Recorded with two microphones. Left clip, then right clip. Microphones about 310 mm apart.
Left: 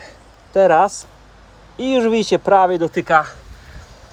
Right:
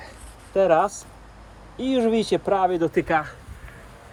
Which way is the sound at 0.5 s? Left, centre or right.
Left.